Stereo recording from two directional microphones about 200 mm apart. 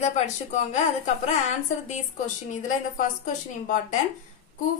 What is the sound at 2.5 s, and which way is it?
A woman's voice, 40° left (ahead or behind).